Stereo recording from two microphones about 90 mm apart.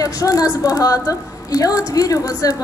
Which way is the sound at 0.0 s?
40° left (ahead or behind).